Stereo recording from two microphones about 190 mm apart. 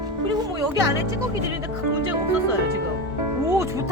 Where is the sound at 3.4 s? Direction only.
15° right (ahead or behind).